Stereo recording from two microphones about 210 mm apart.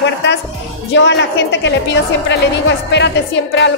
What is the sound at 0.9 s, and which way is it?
Speech, 60° left (ahead or behind).